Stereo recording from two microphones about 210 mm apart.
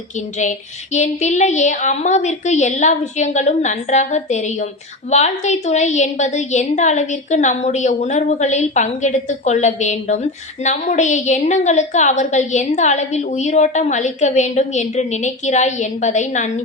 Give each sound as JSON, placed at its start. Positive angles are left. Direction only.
{"t": 0.9, "sound": "a woman's voice", "side_deg": 35}